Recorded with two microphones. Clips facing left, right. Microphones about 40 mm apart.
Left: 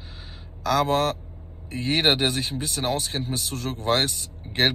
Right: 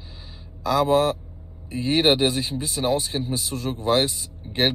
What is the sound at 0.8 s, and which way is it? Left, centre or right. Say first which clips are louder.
Speech: right 5 dB; left.